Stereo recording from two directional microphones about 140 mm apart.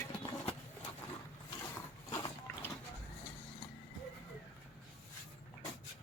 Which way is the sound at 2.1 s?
30° left (ahead or behind).